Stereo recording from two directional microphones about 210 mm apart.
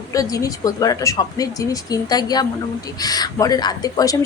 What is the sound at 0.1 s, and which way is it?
A woman's voice, 15° left (ahead or behind).